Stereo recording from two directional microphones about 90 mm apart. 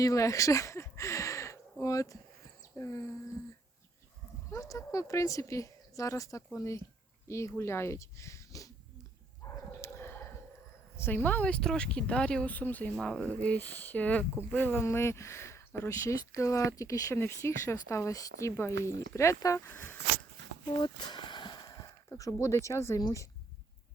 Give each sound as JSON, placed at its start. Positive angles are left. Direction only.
{"t": 0.0, "sound": "speech", "side_deg": 40}
{"t": 4.5, "sound": "speech", "side_deg": 35}
{"t": 9.4, "sound": "bow-wow", "side_deg": 30}
{"t": 10.9, "sound": "speech", "side_deg": 25}
{"t": 13.0, "sound": "speech", "side_deg": 5}
{"t": 14.8, "sound": "speech", "side_deg": 30}
{"t": 19.5, "sound": "speech", "side_deg": 25}
{"t": 20.7, "sound": "a sound", "side_deg": 55}
{"t": 22.1, "sound": "speech", "side_deg": 40}
{"t": 23.0, "sound": "speech", "side_deg": 45}